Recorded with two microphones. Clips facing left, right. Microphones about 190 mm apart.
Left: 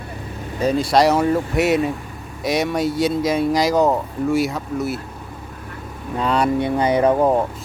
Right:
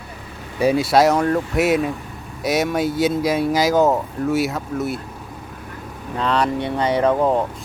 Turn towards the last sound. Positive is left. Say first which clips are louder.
# left 1 dB
turn(degrees=10)  # may be behind; listen again after turning